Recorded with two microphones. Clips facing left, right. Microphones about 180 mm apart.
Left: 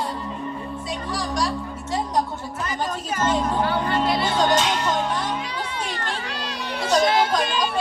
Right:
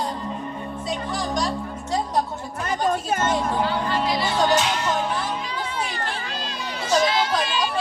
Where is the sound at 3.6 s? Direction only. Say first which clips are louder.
Left 1 dB; 55° left (ahead or behind).